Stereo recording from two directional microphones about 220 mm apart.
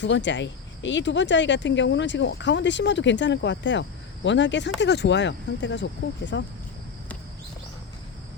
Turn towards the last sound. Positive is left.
turn(degrees=55)  # may be behind; listen again after turning